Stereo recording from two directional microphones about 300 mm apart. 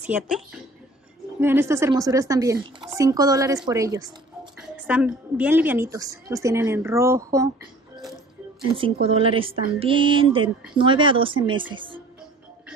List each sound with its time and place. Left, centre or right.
0.0 s a woman's voice: centre